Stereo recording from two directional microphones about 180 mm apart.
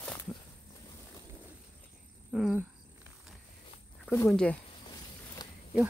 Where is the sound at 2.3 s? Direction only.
5° right (ahead or behind).